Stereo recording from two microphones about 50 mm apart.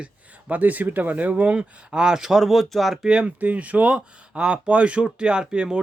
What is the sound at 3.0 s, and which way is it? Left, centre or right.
Speech, right.